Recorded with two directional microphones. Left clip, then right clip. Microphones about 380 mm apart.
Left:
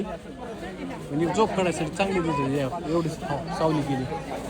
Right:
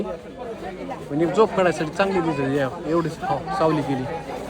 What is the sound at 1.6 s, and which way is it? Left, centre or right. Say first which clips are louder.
A man's voice: right 5 dB; centre.